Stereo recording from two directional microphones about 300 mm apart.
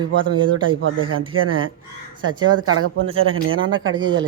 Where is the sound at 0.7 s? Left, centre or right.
Right.